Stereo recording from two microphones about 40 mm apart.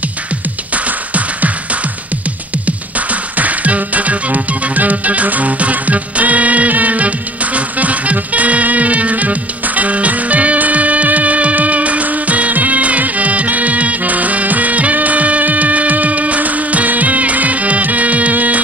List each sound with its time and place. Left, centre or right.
3.3 s music: right